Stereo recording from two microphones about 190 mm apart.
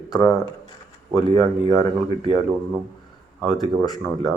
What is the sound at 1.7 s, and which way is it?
Speech, 20° left (ahead or behind).